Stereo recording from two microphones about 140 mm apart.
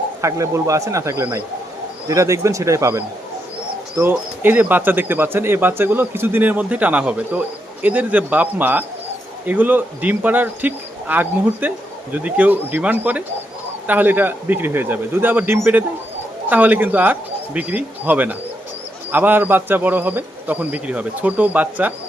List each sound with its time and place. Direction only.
0.2 s a man's voice: 20° right (ahead or behind)
3.9 s speech: 10° right (ahead or behind)